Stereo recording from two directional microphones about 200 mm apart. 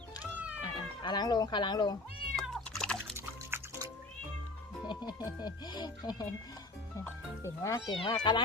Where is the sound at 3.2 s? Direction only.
15° right (ahead or behind).